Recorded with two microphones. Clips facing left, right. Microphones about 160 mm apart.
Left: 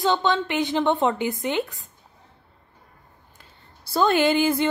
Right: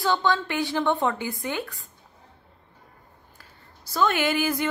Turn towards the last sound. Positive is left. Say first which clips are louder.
# left 5 dB
turn(degrees=25)  # may be behind; listen again after turning